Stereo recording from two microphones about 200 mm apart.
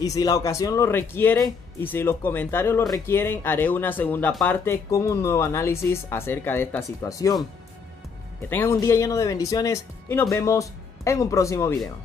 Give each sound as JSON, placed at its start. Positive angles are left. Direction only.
{"t": 0.0, "sound": "speech", "side_deg": 20}
{"t": 8.5, "sound": "speech", "side_deg": 10}